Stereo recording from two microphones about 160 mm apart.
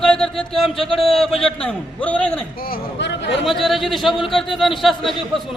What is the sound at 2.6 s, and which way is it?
Speech, 65° left (ahead or behind).